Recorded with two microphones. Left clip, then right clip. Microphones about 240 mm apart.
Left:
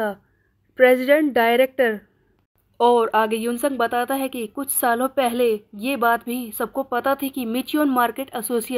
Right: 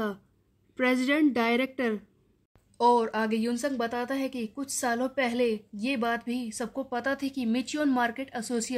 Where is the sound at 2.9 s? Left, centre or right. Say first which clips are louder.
Left 8 dB; centre.